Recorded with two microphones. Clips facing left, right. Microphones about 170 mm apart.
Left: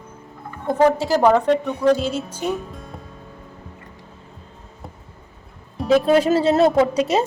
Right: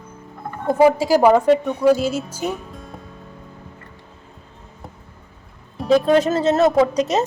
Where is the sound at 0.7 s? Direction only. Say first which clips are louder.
Right 2 dB; 10° right (ahead or behind).